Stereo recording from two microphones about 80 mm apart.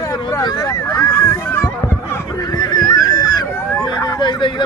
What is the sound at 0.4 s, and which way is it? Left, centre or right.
Speech, left.